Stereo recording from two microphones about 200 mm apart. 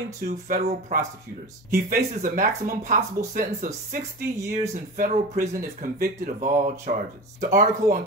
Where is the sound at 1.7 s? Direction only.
45° right (ahead or behind).